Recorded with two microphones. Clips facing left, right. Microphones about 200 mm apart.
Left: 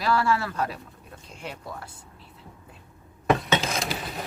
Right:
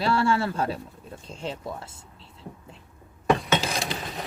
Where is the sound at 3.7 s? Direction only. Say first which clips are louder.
Even; centre (ahead or behind).